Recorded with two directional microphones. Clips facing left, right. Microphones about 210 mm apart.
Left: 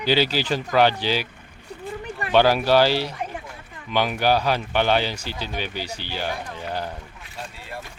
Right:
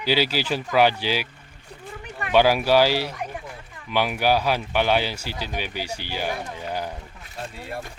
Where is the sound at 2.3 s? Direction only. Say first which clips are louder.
Even; 10° right (ahead or behind).